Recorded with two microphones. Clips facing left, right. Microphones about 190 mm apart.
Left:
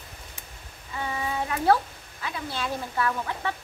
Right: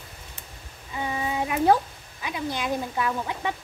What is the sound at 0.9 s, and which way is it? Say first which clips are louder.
A child's voice: right 2 dB; 15° right (ahead or behind).